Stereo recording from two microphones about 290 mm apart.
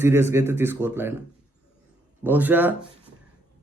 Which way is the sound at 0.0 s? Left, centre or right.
Centre.